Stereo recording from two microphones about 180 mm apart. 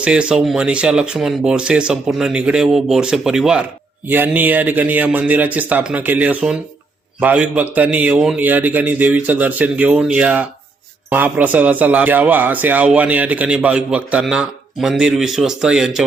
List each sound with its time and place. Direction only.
0.0 s a man's voice: 5° right (ahead or behind)